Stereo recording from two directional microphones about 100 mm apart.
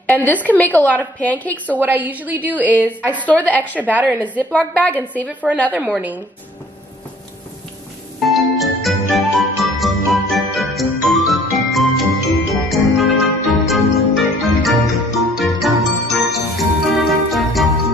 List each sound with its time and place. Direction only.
0.1 s a woman's voice: 15° left (ahead or behind)
1.8 s a woman's voice: 15° right (ahead or behind)
3.1 s a woman's voice: 15° left (ahead or behind)
3.8 s a woman's voice: 15° right (ahead or behind)
4.4 s a woman's voice: 15° left (ahead or behind)
5.7 s a woman's voice: 15° right (ahead or behind)
8.2 s music: centre (ahead or behind)